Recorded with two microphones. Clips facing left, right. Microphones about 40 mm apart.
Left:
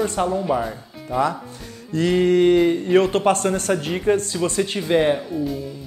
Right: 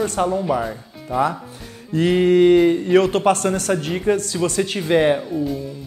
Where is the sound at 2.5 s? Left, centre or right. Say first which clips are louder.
Right 2 dB; centre.